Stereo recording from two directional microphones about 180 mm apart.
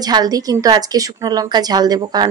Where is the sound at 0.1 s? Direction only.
20° right (ahead or behind).